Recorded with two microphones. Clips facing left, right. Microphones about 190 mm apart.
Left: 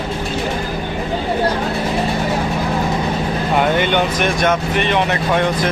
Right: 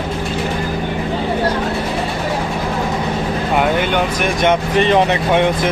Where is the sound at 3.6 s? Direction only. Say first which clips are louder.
Left 1 dB; 5° right (ahead or behind).